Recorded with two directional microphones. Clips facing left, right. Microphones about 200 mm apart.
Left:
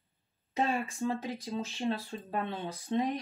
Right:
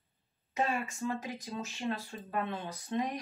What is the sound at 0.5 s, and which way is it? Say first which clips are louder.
Speech: left 2 dB; 30° left (ahead or behind).